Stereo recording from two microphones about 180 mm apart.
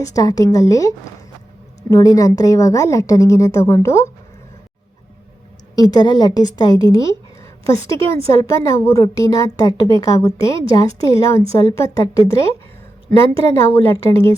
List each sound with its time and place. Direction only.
0.0 s a woman's voice: 20° left (ahead or behind)
5.7 s a woman's voice: 20° left (ahead or behind)
13.4 s a woman's voice: 15° left (ahead or behind)